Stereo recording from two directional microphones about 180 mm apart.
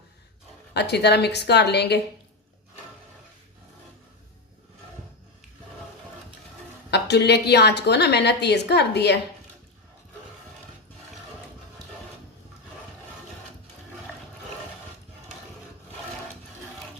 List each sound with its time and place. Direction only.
0.7 s a woman's voice: 70° left (ahead or behind)
6.9 s a woman's voice: 70° left (ahead or behind)